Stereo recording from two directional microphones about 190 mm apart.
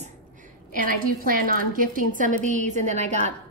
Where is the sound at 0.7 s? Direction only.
45° right (ahead or behind).